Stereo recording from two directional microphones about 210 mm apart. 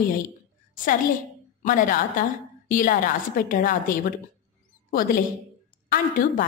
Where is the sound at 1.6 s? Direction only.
40° left (ahead or behind).